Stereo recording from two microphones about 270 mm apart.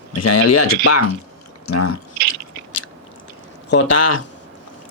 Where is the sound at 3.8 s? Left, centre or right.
Left.